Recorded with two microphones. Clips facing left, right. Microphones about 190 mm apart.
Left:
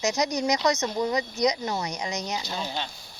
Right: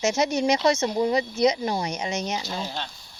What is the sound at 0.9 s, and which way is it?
Speech, 10° right (ahead or behind).